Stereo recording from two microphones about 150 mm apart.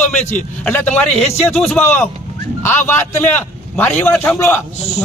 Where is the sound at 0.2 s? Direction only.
10° left (ahead or behind).